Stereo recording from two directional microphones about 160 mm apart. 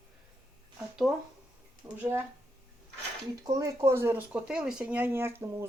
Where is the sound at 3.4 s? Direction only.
20° right (ahead or behind).